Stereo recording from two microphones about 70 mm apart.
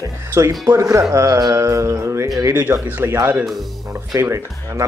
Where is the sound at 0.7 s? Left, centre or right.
Right.